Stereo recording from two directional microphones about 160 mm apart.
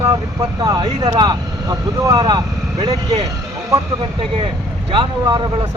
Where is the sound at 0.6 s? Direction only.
25° right (ahead or behind).